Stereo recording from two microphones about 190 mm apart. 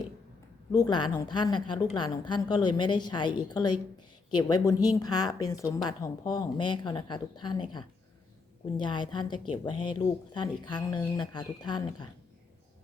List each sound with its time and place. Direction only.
0.7 s a woman's voice: 20° left (ahead or behind)